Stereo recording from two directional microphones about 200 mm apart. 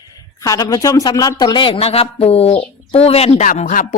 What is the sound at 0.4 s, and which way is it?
Speech, 15° left (ahead or behind).